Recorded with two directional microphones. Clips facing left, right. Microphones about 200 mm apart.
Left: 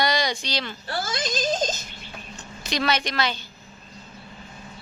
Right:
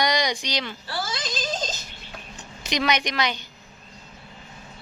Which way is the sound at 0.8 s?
45° left (ahead or behind).